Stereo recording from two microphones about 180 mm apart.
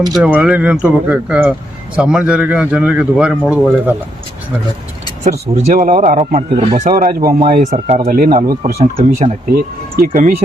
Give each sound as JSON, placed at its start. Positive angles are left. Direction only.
{"t": 0.2, "sound": "speech", "side_deg": -10}
{"t": 5.6, "sound": "speech", "side_deg": -45}
{"t": 7.7, "sound": "speech", "side_deg": -40}
{"t": 8.0, "sound": "speech", "side_deg": -55}
{"t": 8.8, "sound": "speech", "side_deg": -35}
{"t": 9.6, "sound": "speech", "side_deg": -55}